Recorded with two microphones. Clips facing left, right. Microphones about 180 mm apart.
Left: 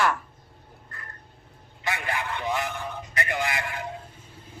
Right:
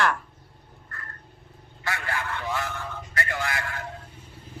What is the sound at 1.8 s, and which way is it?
A man's voice, 20° left (ahead or behind).